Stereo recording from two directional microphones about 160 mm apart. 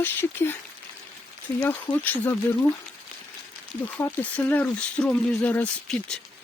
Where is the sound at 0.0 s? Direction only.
15° left (ahead or behind).